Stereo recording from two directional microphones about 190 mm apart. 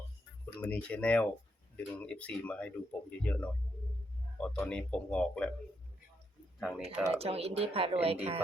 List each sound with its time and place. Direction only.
0.6 s speech: 5° left (ahead or behind)
6.6 s speech: 5° right (ahead or behind)
7.1 s speech: 30° right (ahead or behind)